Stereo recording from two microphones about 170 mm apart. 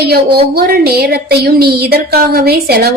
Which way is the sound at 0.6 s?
65° right (ahead or behind).